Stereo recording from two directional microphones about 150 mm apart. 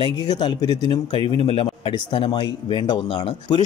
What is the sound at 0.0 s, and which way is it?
A man's voice, 30° left (ahead or behind).